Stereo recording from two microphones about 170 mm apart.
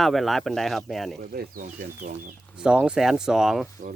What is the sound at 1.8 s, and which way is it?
Speech, 55° right (ahead or behind).